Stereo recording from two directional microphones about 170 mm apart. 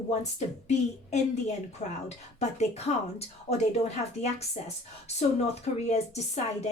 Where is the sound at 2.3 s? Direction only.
40° left (ahead or behind).